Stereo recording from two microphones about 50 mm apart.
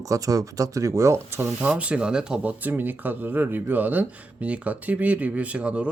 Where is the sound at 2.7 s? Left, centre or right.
Right.